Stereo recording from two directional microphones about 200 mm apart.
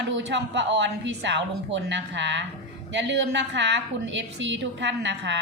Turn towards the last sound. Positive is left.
turn(degrees=-60)  # may be behind; listen again after turning